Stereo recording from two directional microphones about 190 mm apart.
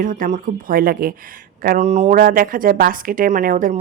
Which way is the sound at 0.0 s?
45° right (ahead or behind).